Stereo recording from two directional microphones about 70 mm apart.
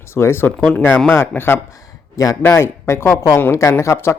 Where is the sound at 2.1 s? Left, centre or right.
Left.